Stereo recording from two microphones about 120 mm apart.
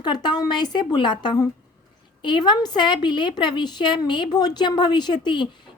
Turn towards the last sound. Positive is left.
turn(degrees=40)  # may be behind; listen again after turning